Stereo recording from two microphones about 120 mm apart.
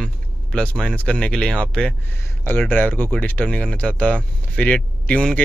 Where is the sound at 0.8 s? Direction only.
10° left (ahead or behind).